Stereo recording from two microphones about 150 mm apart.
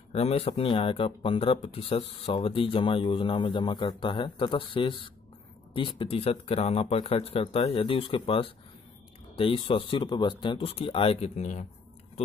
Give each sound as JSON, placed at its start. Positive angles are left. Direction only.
{"t": 0.1, "sound": "speech", "side_deg": 40}